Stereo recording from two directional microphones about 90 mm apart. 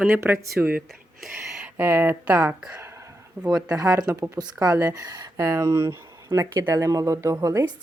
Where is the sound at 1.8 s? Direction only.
25° right (ahead or behind).